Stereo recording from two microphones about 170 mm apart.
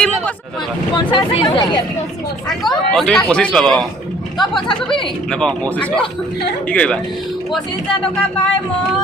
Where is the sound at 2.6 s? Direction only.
5° left (ahead or behind).